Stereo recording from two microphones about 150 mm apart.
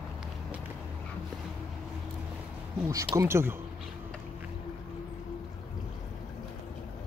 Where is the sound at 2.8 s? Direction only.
20° right (ahead or behind).